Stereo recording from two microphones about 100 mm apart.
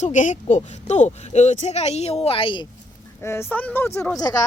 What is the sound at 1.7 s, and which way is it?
Speech, 90° left.